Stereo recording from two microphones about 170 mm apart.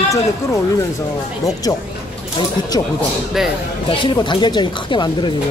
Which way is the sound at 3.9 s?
30° left (ahead or behind).